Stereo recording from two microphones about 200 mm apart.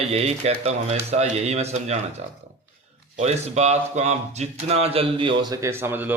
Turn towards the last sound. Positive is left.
turn(degrees=-10)  # may be behind; listen again after turning